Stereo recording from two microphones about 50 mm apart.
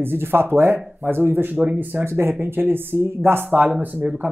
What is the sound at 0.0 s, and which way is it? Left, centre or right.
Speech, right.